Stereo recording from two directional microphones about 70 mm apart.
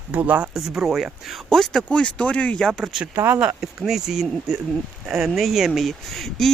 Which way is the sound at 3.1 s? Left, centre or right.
Right.